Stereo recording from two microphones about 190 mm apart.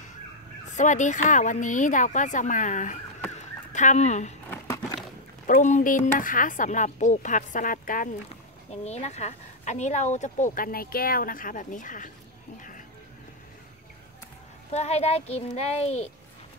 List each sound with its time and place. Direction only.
0.7 s a woman's voice: 40° left (ahead or behind)
4.5 s crumpling: 15° left (ahead or behind)
5.5 s a woman's voice: 40° left (ahead or behind)
8.8 s a woman's voice: 35° left (ahead or behind)
12.5 s music: 45° left (ahead or behind)
14.7 s a woman's voice: 35° left (ahead or behind)